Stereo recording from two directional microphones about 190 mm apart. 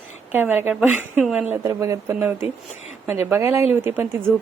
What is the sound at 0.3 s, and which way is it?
A woman's voice, 10° right (ahead or behind).